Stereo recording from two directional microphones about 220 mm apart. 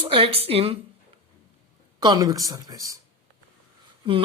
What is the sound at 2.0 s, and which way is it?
Speech, 20° right (ahead or behind).